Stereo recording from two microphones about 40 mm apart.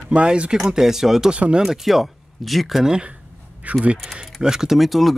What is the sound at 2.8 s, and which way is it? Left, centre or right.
Speech, right.